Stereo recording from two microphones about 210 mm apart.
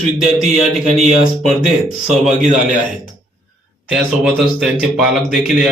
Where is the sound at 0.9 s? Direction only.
30° right (ahead or behind).